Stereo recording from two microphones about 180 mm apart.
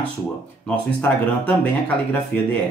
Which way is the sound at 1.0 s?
10° left (ahead or behind).